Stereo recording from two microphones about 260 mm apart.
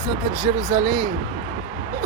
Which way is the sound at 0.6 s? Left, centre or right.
Right.